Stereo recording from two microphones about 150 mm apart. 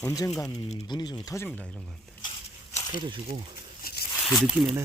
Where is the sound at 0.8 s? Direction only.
25° left (ahead or behind).